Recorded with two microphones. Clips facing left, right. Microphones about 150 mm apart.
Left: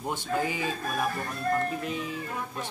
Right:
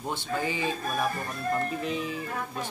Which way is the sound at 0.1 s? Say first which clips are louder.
Left 1 dB; 10° left (ahead or behind).